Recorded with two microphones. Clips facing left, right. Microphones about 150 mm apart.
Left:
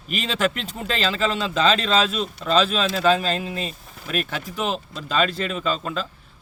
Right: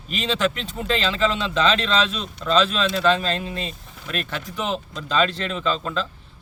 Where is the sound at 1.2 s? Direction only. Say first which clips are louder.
Right 1 dB; 45° left (ahead or behind).